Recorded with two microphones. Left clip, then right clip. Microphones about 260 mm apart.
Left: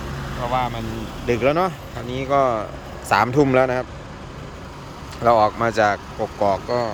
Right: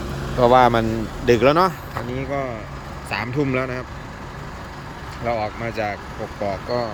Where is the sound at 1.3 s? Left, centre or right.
Centre.